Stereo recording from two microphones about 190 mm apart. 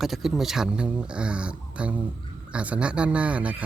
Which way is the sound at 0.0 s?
Centre (ahead or behind).